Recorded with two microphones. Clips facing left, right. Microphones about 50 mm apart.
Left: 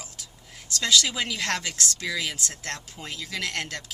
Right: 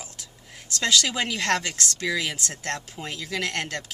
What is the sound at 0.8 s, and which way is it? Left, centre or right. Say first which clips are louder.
Speech: right 1 dB; right.